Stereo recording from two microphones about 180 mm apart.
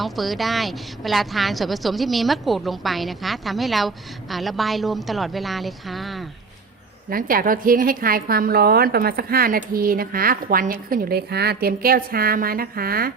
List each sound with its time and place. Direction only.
0.0 s speech: centre (ahead or behind)
7.1 s a woman's voice: 55° right (ahead or behind)